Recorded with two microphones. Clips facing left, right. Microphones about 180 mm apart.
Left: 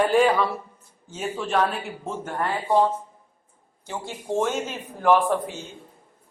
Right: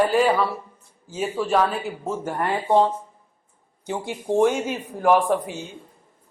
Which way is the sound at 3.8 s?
15° right (ahead or behind).